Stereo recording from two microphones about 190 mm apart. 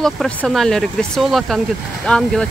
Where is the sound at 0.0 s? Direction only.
Centre (ahead or behind).